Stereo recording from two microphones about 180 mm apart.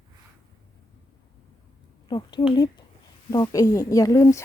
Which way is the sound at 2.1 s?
25° left (ahead or behind).